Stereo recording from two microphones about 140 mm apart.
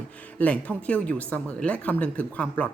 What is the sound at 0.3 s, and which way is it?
A woman's voice, 10° left (ahead or behind).